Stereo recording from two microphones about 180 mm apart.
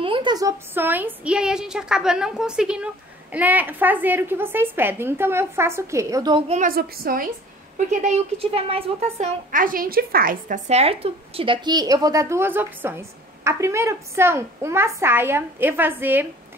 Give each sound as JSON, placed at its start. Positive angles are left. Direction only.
{"t": 0.0, "sound": "a woman's voice", "side_deg": -25}
{"t": 6.5, "sound": "a woman's voice", "side_deg": -50}
{"t": 7.7, "sound": "speech", "side_deg": -45}
{"t": 9.5, "sound": "a woman's voice", "side_deg": -50}
{"t": 10.7, "sound": "a woman's voice", "side_deg": -35}